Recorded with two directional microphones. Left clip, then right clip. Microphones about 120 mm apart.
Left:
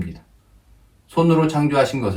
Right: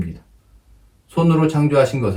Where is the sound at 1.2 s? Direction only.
25° left (ahead or behind).